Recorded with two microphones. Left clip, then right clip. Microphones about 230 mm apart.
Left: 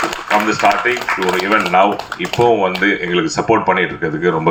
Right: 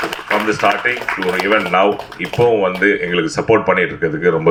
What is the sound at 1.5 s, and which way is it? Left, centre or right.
Speech, right.